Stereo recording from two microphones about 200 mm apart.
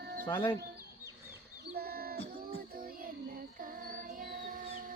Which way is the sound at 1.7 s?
50° right (ahead or behind).